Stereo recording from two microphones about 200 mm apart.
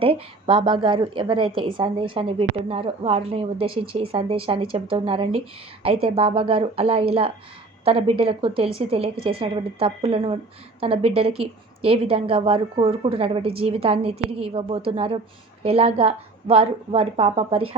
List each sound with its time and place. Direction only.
0.0 s a woman's voice: 25° right (ahead or behind)